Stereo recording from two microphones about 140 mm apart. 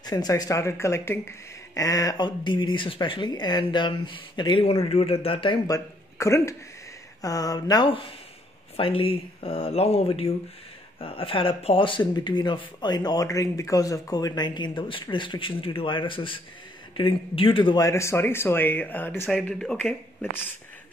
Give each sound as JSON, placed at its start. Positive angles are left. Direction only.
{"t": 0.0, "sound": "speech", "side_deg": 30}
{"t": 5.7, "sound": "speech", "side_deg": 20}
{"t": 8.7, "sound": "speech", "side_deg": 40}
{"t": 17.7, "sound": "speech", "side_deg": 20}